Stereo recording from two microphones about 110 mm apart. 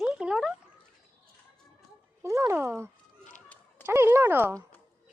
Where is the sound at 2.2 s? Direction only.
30° right (ahead or behind).